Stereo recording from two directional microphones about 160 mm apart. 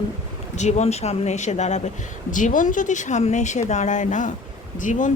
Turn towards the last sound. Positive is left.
turn(degrees=55)  # may be behind; listen again after turning